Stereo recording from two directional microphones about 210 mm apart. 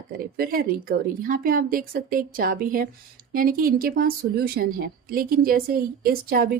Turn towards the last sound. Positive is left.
turn(degrees=-45)  # may be behind; listen again after turning